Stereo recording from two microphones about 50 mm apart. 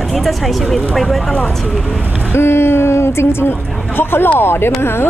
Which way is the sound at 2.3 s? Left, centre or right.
Left.